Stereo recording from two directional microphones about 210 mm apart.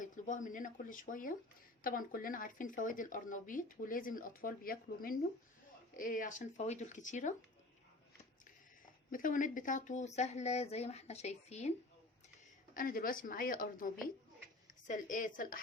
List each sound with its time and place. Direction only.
0.0 s speech: 40° left (ahead or behind)
9.0 s speech: 40° left (ahead or behind)
12.7 s speech: 45° left (ahead or behind)